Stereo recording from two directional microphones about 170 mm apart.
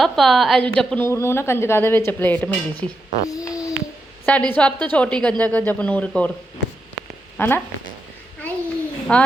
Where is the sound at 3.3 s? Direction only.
20° left (ahead or behind).